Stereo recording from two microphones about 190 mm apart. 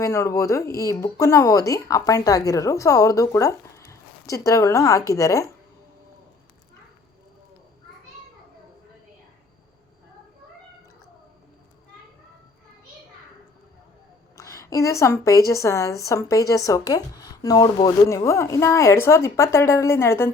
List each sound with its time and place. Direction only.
0.0 s a woman's voice: 15° left (ahead or behind)
14.3 s a woman's voice: 15° left (ahead or behind)